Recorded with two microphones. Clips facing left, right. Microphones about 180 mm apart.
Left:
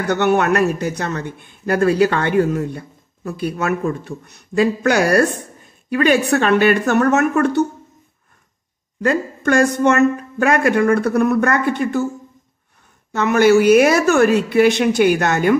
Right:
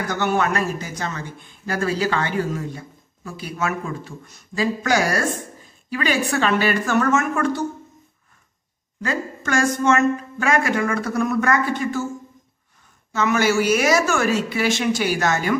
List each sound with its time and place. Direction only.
0.0 s speech: 65° left (ahead or behind)
9.0 s speech: 55° left (ahead or behind)
13.1 s speech: 60° left (ahead or behind)